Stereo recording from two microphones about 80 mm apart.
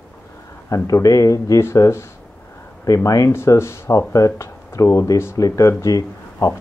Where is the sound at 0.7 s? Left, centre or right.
Left.